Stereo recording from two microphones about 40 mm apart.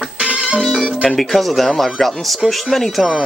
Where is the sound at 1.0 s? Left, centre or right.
Centre.